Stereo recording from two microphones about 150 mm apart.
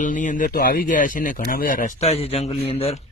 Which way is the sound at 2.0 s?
40° left (ahead or behind).